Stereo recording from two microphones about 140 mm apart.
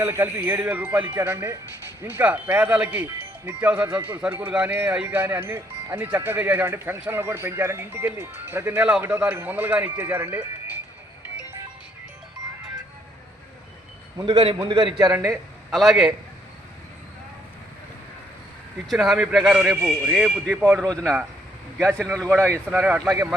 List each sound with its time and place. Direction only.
0.0 s speech: 15° right (ahead or behind)
14.6 s a man's voice: 35° right (ahead or behind)
15.1 s a man's voice: 20° right (ahead or behind)
15.7 s speech: centre (ahead or behind)
18.9 s speech: centre (ahead or behind)
20.7 s a man's voice: 5° left (ahead or behind)
22.7 s speech: 10° right (ahead or behind)